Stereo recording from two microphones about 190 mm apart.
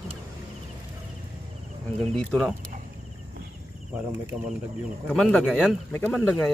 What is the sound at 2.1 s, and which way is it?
Speech, centre (ahead or behind).